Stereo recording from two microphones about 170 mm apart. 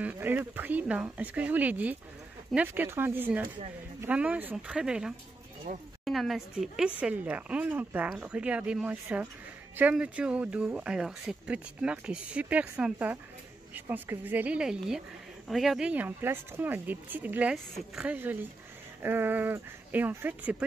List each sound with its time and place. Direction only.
0.0 s speech: 10° right (ahead or behind)
5.7 s speech: 55° right (ahead or behind)
6.0 s speech: centre (ahead or behind)